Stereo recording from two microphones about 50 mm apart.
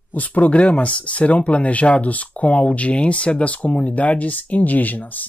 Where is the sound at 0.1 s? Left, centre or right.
Left.